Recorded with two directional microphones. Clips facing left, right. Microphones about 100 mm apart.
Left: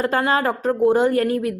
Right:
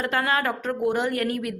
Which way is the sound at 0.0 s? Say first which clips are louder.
Left 5 dB; 30° left (ahead or behind).